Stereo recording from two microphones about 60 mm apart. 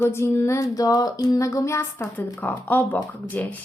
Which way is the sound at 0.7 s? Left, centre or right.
Left.